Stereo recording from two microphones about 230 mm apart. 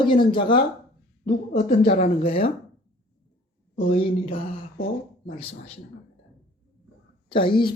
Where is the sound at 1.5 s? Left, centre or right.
Left.